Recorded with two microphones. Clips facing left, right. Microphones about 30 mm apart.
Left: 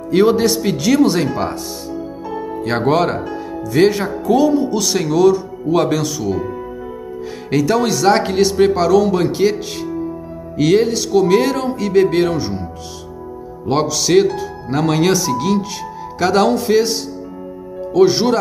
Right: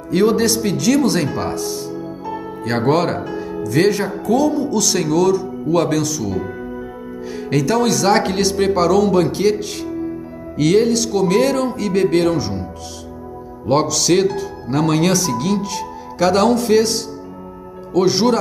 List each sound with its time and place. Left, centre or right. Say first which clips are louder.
0.1 s speech: left 2 dB; centre
2.8 s speech: left 1 dB; centre
3.3 s music: even; centre
3.8 s speech: left 4 dB; centre
7.4 s speech: left 1 dB; centre
13.7 s speech: right 1 dB; centre